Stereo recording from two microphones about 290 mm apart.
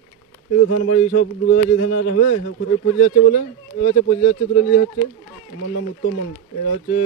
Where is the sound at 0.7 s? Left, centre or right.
Left.